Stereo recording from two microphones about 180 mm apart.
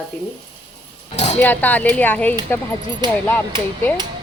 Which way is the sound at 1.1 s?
40° left (ahead or behind).